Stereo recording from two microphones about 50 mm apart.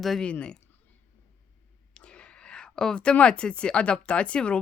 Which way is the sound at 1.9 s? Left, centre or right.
Centre.